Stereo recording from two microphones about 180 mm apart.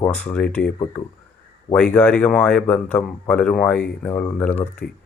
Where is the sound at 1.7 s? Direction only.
5° left (ahead or behind).